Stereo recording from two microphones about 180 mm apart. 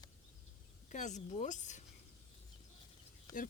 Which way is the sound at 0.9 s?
40° left (ahead or behind).